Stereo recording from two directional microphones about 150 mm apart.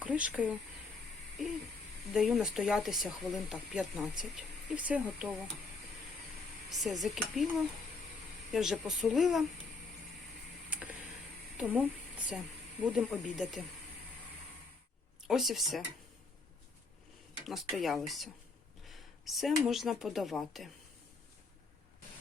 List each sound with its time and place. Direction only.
0.0 s speech: 10° right (ahead or behind)
2.1 s speech: centre (ahead or behind)
6.7 s speech: centre (ahead or behind)
10.7 s a sound: 10° right (ahead or behind)
11.5 s speech: 10° right (ahead or behind)
15.3 s speech: centre (ahead or behind)
17.4 s speech: centre (ahead or behind)
18.9 s a sound: centre (ahead or behind)
19.6 s speech: centre (ahead or behind)